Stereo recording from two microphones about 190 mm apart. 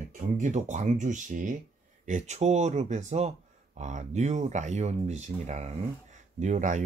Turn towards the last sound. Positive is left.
turn(degrees=-40)  # may be behind; listen again after turning